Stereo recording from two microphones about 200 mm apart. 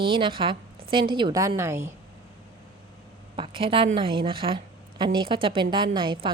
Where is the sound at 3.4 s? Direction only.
25° right (ahead or behind).